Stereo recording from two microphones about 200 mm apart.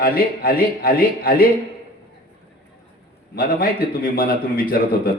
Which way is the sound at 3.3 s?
45° left (ahead or behind).